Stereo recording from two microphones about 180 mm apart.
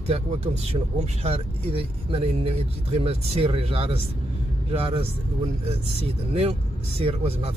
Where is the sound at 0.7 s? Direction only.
35° right (ahead or behind).